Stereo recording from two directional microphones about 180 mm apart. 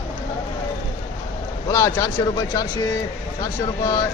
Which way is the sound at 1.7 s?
15° left (ahead or behind).